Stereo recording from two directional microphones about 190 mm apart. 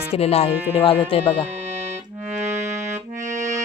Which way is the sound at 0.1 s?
30° left (ahead or behind).